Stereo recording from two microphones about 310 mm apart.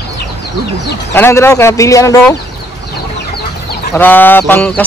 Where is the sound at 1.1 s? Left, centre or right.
Centre.